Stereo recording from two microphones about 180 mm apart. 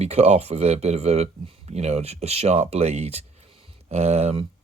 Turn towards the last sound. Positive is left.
turn(degrees=-35)  # may be behind; listen again after turning